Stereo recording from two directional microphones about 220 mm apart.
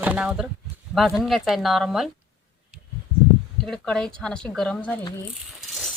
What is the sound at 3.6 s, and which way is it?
Speech, 5° left (ahead or behind).